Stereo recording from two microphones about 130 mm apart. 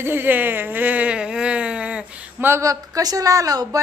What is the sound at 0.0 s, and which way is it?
Speech, 15° right (ahead or behind).